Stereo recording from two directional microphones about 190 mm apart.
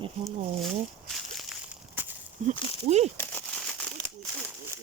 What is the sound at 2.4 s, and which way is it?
Speech, 40° right (ahead or behind).